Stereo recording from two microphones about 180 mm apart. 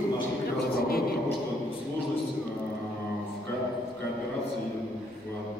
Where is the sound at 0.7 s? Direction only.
55° left (ahead or behind).